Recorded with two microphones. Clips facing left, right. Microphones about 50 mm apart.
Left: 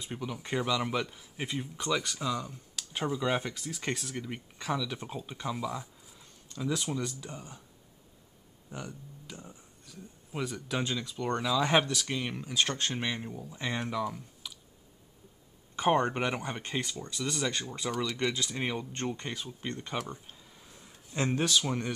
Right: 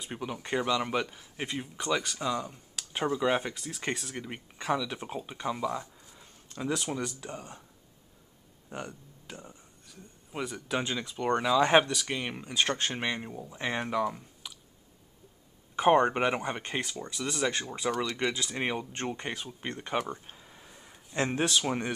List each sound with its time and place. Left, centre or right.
0.1 s speech: centre
0.4 s speech: centre
6.9 s speech: centre
7.2 s speech: centre
9.4 s speech: centre
11.0 s speech: centre
11.2 s speech: centre
14.0 s clicking: centre
15.7 s speech: centre
17.9 s speech: centre
18.5 s speech: right
20.2 s a sound: right
20.6 s a sound: centre